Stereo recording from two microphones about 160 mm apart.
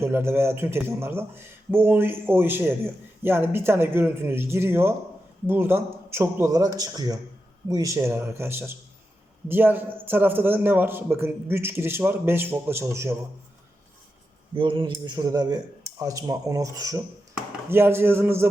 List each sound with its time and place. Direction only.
0.0 s speech: 15° right (ahead or behind)
14.5 s speech: 30° right (ahead or behind); by 18.4 s 15° right (ahead or behind)